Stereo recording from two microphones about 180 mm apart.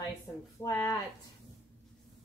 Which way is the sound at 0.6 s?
20° left (ahead or behind).